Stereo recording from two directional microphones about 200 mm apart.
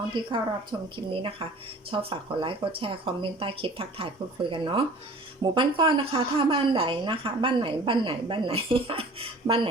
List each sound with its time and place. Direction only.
0.1 s a woman's voice: 25° right (ahead or behind)